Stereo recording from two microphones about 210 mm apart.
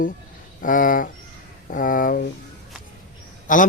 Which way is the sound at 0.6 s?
40° left (ahead or behind).